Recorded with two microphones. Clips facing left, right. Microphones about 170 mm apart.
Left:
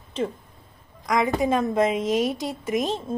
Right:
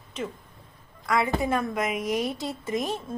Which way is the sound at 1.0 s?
15° left (ahead or behind).